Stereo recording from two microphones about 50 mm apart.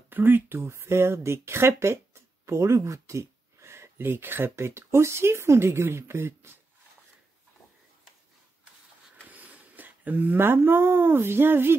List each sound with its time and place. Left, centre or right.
0.1 s speech: right
2.4 s speech: right
9.3 s speech: right